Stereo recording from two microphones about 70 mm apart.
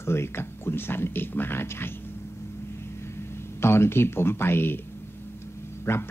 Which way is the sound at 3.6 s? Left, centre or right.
Left.